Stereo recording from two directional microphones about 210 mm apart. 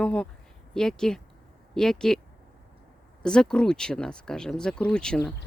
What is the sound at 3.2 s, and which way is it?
Speech, 5° left (ahead or behind).